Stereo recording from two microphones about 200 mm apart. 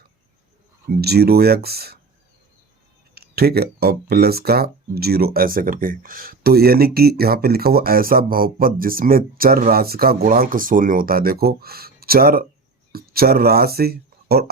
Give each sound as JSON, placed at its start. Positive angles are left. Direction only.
{"t": 0.9, "sound": "speech", "side_deg": -50}
{"t": 3.2, "sound": "speech", "side_deg": -50}